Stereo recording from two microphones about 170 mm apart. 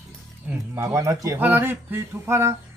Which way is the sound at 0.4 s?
15° right (ahead or behind).